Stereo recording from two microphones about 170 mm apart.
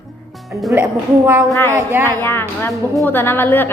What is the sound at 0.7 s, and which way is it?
Speech, 10° right (ahead or behind).